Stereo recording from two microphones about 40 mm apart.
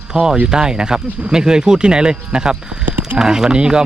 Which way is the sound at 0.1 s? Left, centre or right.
Centre.